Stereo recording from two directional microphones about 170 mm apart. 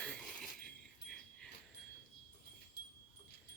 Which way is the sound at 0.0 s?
5° left (ahead or behind).